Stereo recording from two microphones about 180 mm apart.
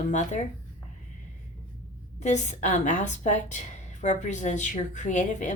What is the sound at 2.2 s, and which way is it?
A woman's voice, 40° left (ahead or behind).